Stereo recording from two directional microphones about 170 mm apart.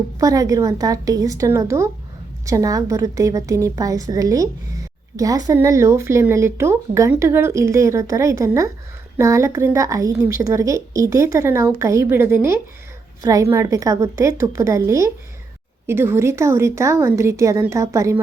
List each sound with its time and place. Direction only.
0.2 s a woman's voice: 20° right (ahead or behind)